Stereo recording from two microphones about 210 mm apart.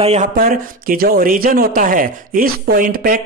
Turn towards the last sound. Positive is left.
turn(degrees=-40)  # may be behind; listen again after turning